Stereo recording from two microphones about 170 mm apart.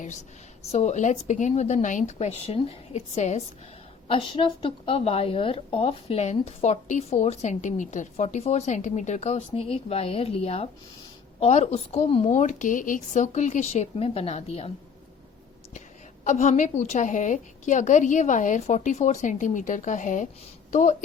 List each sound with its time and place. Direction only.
0.7 s a woman's voice: 45° left (ahead or behind)
4.1 s a woman's voice: 30° left (ahead or behind)
16.2 s a woman's voice: 45° left (ahead or behind)